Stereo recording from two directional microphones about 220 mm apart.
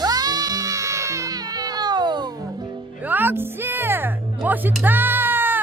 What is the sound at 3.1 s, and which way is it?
Music, 10° right (ahead or behind).